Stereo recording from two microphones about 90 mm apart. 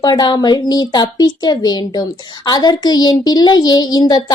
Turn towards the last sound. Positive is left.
turn(degrees=50)  # may be behind; listen again after turning